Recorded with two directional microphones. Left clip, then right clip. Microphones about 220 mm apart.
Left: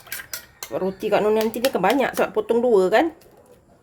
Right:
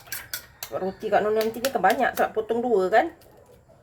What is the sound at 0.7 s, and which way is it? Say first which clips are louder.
Speech: left 2 dB; 50° left (ahead or behind).